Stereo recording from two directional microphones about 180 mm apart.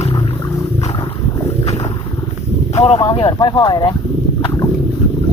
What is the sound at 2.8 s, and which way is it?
Speech, 30° left (ahead or behind).